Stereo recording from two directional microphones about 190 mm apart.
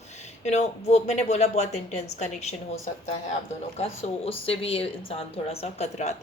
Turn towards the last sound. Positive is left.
turn(degrees=35)  # may be behind; listen again after turning